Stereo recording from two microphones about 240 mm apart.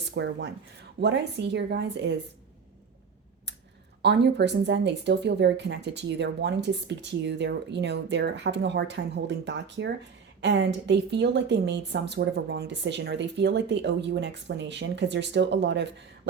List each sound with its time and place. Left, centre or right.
0.1 s speech: right
4.0 s speech: right